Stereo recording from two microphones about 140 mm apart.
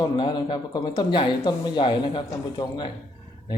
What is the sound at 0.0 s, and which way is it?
Speech, 35° left (ahead or behind).